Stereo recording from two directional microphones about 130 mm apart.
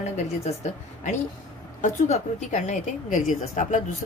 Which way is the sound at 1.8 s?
70° left (ahead or behind).